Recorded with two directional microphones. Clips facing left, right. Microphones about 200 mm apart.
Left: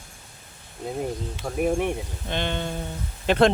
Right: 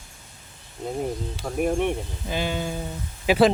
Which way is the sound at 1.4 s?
5° left (ahead or behind).